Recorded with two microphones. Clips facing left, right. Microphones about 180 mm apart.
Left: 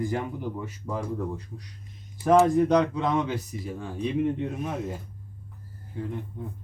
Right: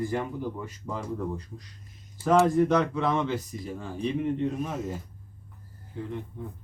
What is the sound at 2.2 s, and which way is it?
Speech, 15° left (ahead or behind).